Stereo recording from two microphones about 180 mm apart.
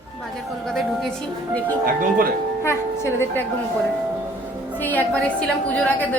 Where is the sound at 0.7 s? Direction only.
Centre (ahead or behind).